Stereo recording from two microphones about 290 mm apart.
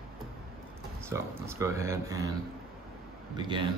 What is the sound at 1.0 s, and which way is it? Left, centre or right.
Speech, centre.